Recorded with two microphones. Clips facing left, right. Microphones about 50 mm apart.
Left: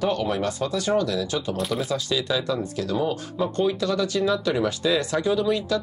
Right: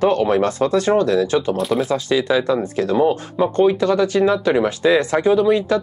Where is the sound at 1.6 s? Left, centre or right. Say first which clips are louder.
Right 7 dB; centre.